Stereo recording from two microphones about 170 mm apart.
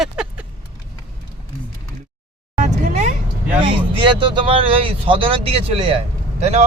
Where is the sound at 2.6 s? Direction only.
45° right (ahead or behind).